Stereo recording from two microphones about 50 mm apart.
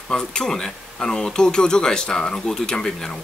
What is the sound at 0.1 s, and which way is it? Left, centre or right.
Speech, centre.